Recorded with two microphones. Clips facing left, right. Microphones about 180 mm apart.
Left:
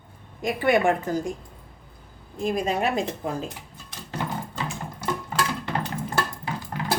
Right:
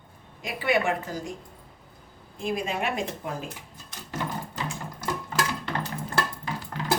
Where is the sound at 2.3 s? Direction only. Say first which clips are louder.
Left 4 dB; 40° left (ahead or behind).